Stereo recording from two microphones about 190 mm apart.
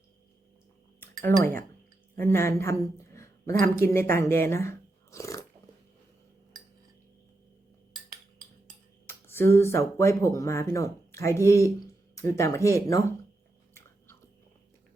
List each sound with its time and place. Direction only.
0.9 s cutlery: 10° left (ahead or behind)
2.1 s a man's voice: 10° left (ahead or behind)
9.0 s speech: 10° left (ahead or behind)